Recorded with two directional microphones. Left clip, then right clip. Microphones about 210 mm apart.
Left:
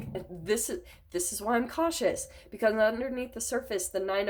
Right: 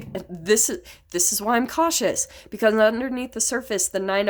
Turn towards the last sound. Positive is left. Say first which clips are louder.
# right 7 dB
turn(degrees=-50)  # may be behind; listen again after turning